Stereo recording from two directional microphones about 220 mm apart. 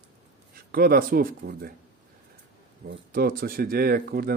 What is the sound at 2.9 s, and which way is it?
Speech, 40° right (ahead or behind).